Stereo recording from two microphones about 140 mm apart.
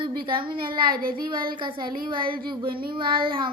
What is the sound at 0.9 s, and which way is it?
Child singing, 90° right.